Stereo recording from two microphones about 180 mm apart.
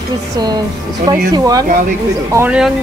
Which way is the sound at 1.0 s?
20° right (ahead or behind).